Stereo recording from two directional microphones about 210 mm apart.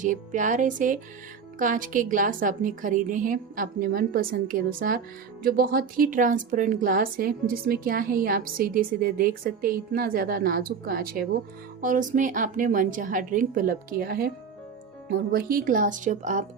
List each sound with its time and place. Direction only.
0.0 s a woman's voice: 35° right (ahead or behind)